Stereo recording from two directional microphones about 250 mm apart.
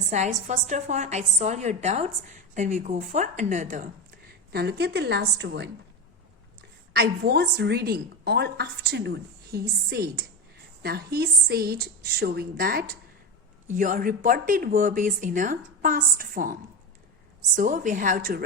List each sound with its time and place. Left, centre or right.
0.1 s a woman's voice: right
4.5 s a woman's voice: right
6.9 s a woman's voice: right